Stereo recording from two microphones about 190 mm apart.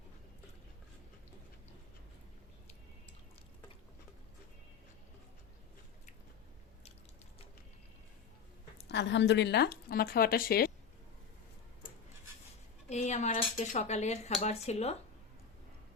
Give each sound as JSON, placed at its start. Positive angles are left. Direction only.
{"t": 8.9, "sound": "speech", "side_deg": 65}
{"t": 12.9, "sound": "speech", "side_deg": 35}